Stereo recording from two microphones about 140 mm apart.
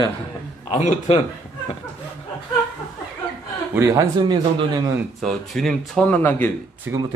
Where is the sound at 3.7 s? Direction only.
20° right (ahead or behind).